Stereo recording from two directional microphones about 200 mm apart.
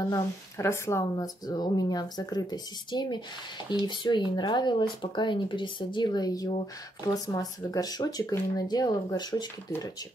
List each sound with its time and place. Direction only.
0.1 s speech: 15° left (ahead or behind)